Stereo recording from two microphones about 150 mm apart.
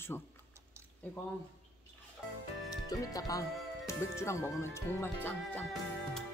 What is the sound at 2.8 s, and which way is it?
Speech, 25° left (ahead or behind).